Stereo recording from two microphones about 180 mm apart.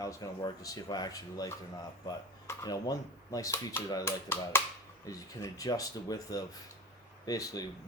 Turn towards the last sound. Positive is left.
turn(degrees=20)  # may be behind; listen again after turning